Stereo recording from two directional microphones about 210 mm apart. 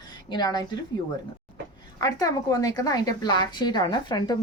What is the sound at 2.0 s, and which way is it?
Speech, 15° left (ahead or behind).